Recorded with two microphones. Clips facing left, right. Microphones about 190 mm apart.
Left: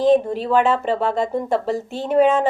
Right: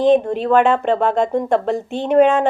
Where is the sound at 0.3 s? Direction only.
60° right (ahead or behind).